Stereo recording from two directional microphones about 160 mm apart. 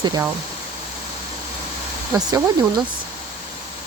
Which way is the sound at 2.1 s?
20° right (ahead or behind).